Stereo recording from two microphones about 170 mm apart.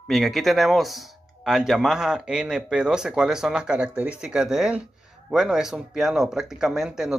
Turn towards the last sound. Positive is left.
turn(degrees=0)  # may be behind; listen again after turning